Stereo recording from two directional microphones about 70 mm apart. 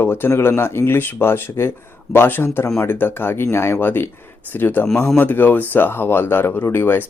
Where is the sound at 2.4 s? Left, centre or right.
Left.